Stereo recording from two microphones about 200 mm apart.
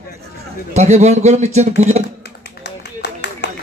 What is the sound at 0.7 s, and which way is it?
Speech, 35° right (ahead or behind).